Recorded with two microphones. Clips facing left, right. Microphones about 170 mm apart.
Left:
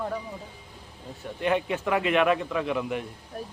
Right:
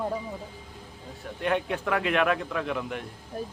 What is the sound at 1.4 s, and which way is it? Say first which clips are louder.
A man's voice: left 2 dB; centre (ahead or behind).